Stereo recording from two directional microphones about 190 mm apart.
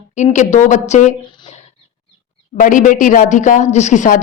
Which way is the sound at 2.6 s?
45° left (ahead or behind).